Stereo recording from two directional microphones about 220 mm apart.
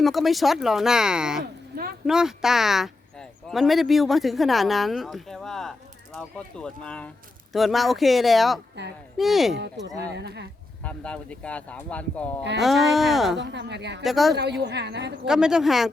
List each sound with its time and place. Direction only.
0.0 s speech: centre (ahead or behind)
10.2 s speech: 50° right (ahead or behind)
10.8 s speech: 5° left (ahead or behind)
13.4 s speech: 50° right (ahead or behind)
14.0 s speech: centre (ahead or behind)
14.3 s speech: 50° right (ahead or behind)
15.3 s speech: 5° right (ahead or behind)